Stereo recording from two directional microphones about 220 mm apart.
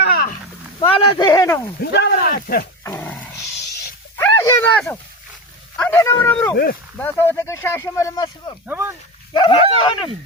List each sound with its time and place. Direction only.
0.0 s a sound: 40° left (ahead or behind)
0.8 s speech: 20° left (ahead or behind)
1.8 s speech: 45° left (ahead or behind)
2.8 s dog: 10° left (ahead or behind)
4.2 s a sound: 10° left (ahead or behind)
5.7 s speech: 10° left (ahead or behind)
8.6 s speech: 10° right (ahead or behind)
9.3 s speech: 20° left (ahead or behind)